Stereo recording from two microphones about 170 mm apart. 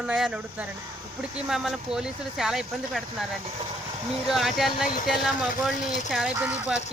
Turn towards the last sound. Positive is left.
turn(degrees=-5)  # may be behind; listen again after turning